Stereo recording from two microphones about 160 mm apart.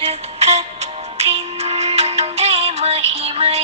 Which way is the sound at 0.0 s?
40° right (ahead or behind).